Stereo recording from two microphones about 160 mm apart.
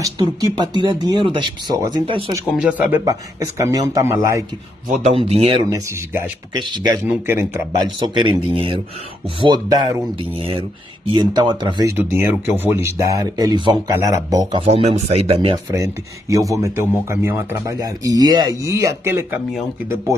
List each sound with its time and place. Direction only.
0.0 s speech: 25° right (ahead or behind)
2.5 s speech: 5° right (ahead or behind)
3.1 s speech: 20° right (ahead or behind)
5.1 s speech: 40° right (ahead or behind)
5.6 s speech: 20° right (ahead or behind)
6.6 s speech: 25° right (ahead or behind)
7.1 s speech: 15° right (ahead or behind)
8.1 s speech: 30° right (ahead or behind)
10.3 s speech: 35° right (ahead or behind)
12.0 s speech: 15° right (ahead or behind)
14.6 s speech: 40° right (ahead or behind)
15.5 s speech: 20° right (ahead or behind)